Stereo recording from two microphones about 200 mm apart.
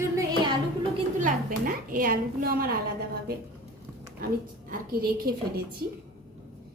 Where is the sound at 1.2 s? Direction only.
45° right (ahead or behind).